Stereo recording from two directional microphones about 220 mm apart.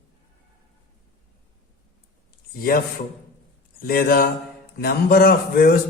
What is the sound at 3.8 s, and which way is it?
A man's voice, 40° left (ahead or behind).